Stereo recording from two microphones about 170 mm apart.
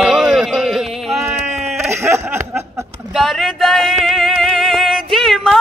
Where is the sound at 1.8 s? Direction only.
15° right (ahead or behind).